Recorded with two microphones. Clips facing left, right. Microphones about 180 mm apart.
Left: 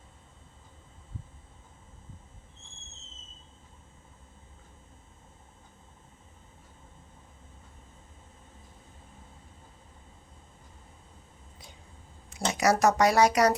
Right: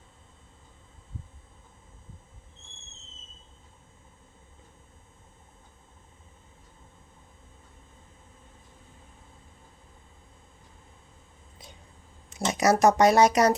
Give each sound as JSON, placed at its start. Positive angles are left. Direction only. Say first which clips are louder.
{"t": 12.3, "sound": "speech", "louder": "right 2 dB", "side_deg": -20}